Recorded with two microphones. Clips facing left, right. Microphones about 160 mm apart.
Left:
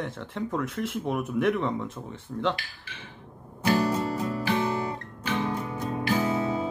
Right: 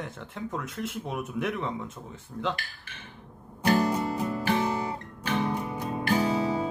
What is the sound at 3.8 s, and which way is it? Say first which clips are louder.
Music: even; 15° right (ahead or behind).